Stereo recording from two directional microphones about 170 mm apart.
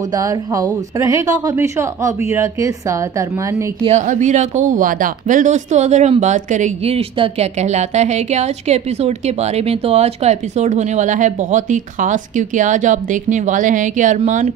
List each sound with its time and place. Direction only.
0.1 s a woman's voice: 20° right (ahead or behind)
3.9 s speech: 45° right (ahead or behind)